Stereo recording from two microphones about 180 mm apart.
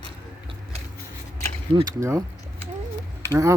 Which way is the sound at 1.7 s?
20° right (ahead or behind).